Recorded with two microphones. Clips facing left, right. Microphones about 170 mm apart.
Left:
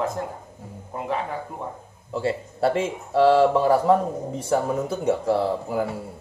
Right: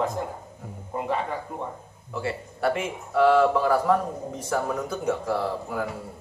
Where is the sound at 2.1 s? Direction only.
25° left (ahead or behind).